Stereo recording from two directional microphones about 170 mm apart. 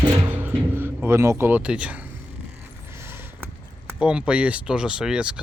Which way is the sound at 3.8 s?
10° right (ahead or behind).